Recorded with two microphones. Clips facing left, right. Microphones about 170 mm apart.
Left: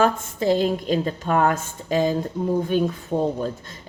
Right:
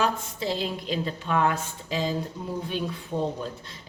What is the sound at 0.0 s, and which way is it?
A woman's voice, 50° left (ahead or behind).